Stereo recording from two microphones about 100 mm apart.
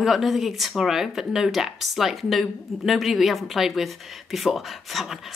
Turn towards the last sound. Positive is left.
turn(degrees=0)  # may be behind; listen again after turning